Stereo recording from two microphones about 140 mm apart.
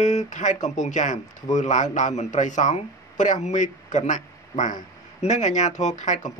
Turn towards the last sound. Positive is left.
turn(degrees=60)  # may be behind; listen again after turning